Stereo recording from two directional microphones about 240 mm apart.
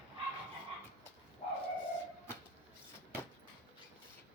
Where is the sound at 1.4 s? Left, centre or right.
Left.